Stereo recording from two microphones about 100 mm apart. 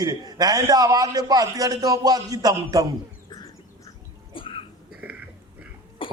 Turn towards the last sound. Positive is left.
turn(degrees=-15)  # may be behind; listen again after turning